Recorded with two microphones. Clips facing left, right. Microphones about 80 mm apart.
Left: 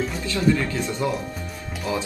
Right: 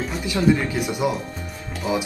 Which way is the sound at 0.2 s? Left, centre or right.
Centre.